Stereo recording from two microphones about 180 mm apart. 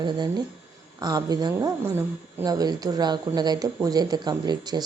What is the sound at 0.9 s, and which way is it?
Speech, 20° right (ahead or behind).